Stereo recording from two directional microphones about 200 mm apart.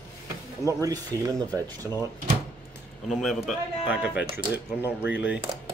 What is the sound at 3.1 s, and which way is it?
A man's voice, centre (ahead or behind).